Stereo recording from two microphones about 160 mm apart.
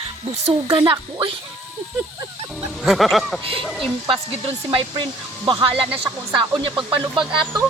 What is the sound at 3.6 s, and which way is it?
Speech, centre (ahead or behind).